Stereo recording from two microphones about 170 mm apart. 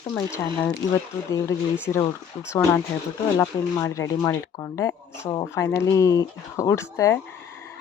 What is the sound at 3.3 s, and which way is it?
Speech, 20° left (ahead or behind).